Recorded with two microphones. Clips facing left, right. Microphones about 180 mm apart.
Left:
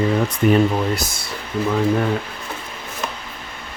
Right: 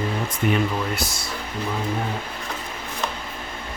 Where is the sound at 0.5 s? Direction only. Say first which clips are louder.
Left 6 dB; 40° left (ahead or behind).